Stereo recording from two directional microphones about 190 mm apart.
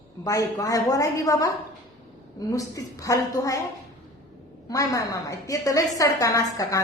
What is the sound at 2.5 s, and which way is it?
A woman's voice, 15° left (ahead or behind).